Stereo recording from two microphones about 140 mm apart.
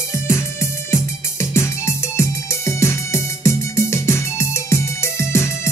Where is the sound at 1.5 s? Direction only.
20° left (ahead or behind).